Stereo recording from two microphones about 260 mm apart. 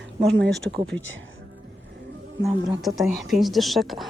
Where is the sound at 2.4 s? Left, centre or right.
Centre.